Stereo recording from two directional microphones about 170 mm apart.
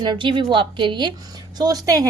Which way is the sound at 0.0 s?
25° right (ahead or behind).